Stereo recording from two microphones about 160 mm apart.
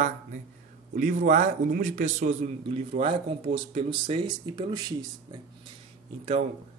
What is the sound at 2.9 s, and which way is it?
Speech, 35° right (ahead or behind).